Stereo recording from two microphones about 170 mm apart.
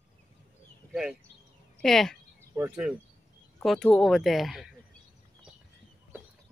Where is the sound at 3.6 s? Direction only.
Centre (ahead or behind).